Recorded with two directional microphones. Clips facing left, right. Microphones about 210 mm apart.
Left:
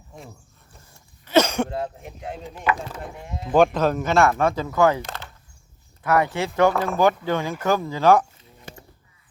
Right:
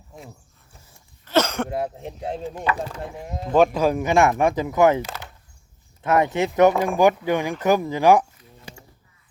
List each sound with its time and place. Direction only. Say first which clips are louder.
0.1 s speech: even; centre (ahead or behind)
1.3 s a sound: left 2 dB; 15° left (ahead or behind)
2.0 s speech: right 5 dB; 30° right (ahead or behind)
3.2 s speech: right 3 dB; 40° right (ahead or behind)
3.5 s speech: even; 5° right (ahead or behind); by 5.0 s 20° right (ahead or behind)
5.0 s a sound: right 1 dB; 5° right (ahead or behind)
6.0 s speech: right 2 dB; 25° right (ahead or behind)